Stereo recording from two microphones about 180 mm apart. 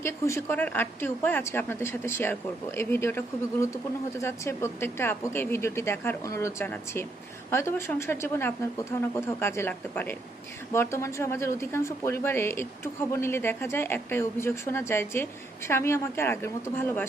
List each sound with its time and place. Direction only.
0.0 s speech: 15° left (ahead or behind)